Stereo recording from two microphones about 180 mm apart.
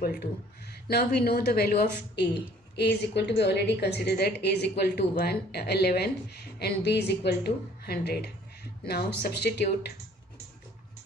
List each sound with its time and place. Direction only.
0.0 s a woman's voice: 55° left (ahead or behind)